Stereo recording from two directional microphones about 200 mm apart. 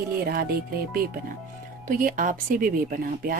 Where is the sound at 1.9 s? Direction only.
45° right (ahead or behind).